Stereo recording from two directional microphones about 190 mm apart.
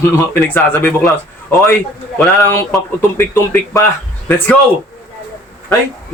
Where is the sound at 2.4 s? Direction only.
10° left (ahead or behind).